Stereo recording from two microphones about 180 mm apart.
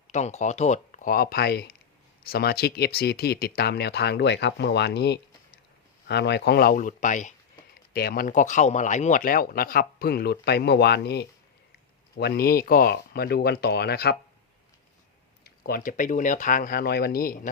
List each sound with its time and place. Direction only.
0.1 s speech: 40° left (ahead or behind)
7.9 s speech: 55° left (ahead or behind)
15.4 s speech: 55° left (ahead or behind)